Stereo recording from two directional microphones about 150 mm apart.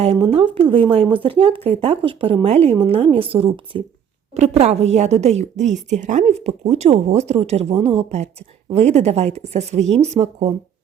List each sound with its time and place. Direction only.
0.0 s a woman's voice: 40° right (ahead or behind)